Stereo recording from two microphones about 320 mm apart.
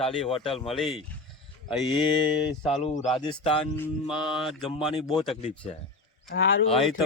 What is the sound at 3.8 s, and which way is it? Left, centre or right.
Speech, centre.